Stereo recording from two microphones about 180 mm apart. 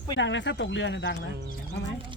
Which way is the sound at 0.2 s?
90° left.